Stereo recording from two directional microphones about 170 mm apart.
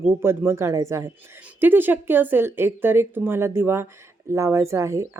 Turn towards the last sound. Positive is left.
turn(degrees=-15)  # may be behind; listen again after turning